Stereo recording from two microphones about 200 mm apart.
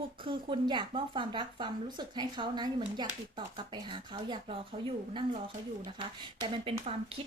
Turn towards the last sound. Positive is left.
turn(degrees=-30)  # may be behind; listen again after turning